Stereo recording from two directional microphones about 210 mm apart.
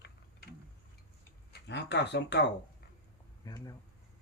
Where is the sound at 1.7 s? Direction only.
55° left (ahead or behind).